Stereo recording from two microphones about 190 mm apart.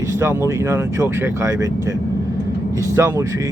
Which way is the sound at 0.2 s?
15° right (ahead or behind).